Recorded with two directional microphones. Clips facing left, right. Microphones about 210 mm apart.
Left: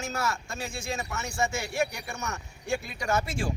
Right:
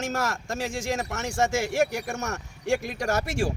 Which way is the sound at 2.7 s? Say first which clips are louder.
Right 5 dB; 90° right.